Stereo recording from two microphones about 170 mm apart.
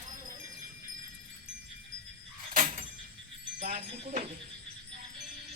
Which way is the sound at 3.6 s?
45° right (ahead or behind).